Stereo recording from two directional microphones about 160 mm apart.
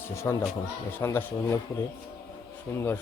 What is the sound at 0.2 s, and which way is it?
Speech, 15° left (ahead or behind).